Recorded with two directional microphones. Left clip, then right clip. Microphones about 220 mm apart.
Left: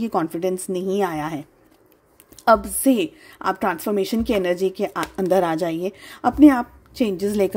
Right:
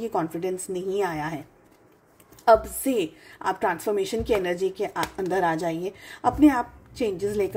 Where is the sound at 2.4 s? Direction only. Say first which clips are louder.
Left 2 dB; 45° left (ahead or behind).